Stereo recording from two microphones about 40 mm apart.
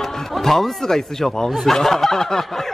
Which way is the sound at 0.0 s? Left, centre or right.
Centre.